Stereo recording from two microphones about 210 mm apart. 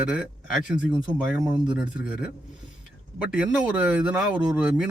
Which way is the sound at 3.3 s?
5° right (ahead or behind).